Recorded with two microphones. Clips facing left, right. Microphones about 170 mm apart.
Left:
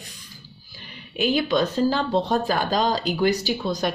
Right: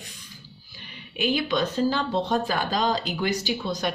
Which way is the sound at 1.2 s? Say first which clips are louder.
Left 3 dB; 40° left (ahead or behind).